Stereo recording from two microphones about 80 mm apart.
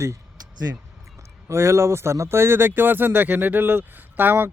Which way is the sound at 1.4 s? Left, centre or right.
Right.